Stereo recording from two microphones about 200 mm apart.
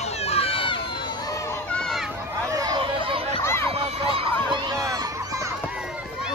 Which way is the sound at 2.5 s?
20° right (ahead or behind).